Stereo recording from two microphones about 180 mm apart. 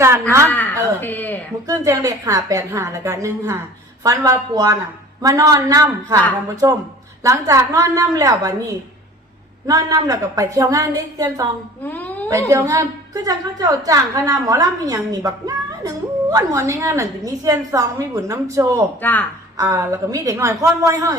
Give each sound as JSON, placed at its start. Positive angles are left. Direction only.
{"t": 0.0, "sound": "a woman's voice", "side_deg": -15}
{"t": 0.4, "sound": "speech", "side_deg": 10}
{"t": 1.6, "sound": "a woman's voice", "side_deg": -20}
{"t": 9.6, "sound": "a woman's voice", "side_deg": -20}
{"t": 11.8, "sound": "a sound", "side_deg": 10}
{"t": 12.5, "sound": "a woman's voice", "side_deg": -15}
{"t": 18.9, "sound": "speech", "side_deg": 10}
{"t": 19.5, "sound": "a woman's voice", "side_deg": -15}